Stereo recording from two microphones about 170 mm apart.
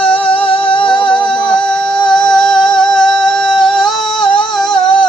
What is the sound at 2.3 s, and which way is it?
Music, 5° left (ahead or behind).